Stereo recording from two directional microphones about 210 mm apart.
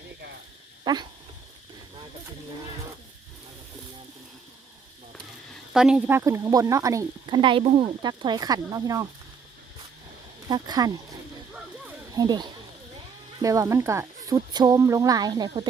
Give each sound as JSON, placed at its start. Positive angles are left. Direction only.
{"t": 0.9, "sound": "speech", "side_deg": -20}
{"t": 5.7, "sound": "speech", "side_deg": -5}
{"t": 10.5, "sound": "speech", "side_deg": -20}
{"t": 12.1, "sound": "speech", "side_deg": -20}